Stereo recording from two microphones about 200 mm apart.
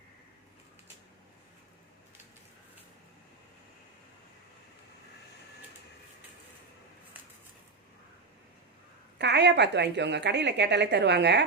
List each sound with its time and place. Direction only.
9.1 s speech: 60° right (ahead or behind)